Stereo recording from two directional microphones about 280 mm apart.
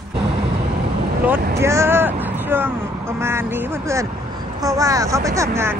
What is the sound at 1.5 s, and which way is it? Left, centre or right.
Speech, centre.